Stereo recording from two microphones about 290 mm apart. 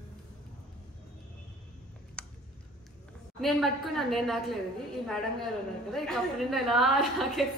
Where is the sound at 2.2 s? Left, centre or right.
Centre.